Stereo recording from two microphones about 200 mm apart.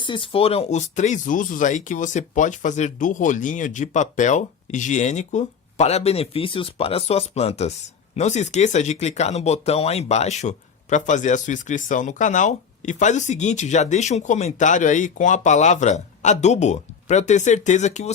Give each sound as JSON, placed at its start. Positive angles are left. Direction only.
{"t": 0.0, "sound": "speech", "side_deg": 25}